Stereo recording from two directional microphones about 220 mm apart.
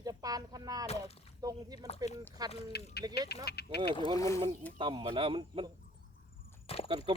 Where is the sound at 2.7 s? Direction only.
45° left (ahead or behind).